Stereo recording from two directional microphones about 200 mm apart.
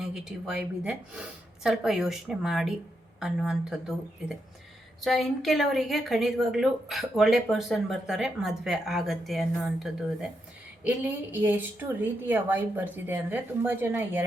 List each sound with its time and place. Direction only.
0.0 s a woman's voice: 5° right (ahead or behind)